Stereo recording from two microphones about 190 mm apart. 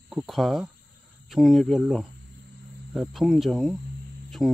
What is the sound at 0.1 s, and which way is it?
Speech, centre (ahead or behind).